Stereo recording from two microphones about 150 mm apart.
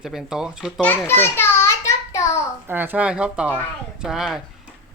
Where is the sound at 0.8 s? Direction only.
15° left (ahead or behind).